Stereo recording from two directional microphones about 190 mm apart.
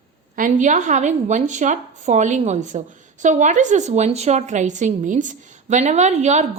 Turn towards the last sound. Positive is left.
turn(degrees=-35)  # may be behind; listen again after turning